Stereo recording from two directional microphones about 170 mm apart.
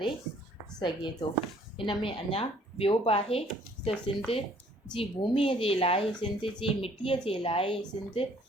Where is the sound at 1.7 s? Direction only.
30° left (ahead or behind).